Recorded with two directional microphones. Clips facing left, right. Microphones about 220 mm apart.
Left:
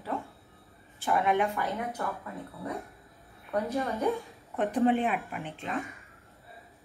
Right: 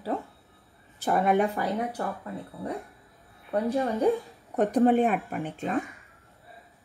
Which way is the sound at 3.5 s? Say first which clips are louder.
Right 4 dB; 30° right (ahead or behind).